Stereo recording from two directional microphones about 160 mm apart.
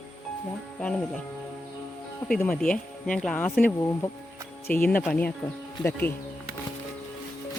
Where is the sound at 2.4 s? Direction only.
5° left (ahead or behind).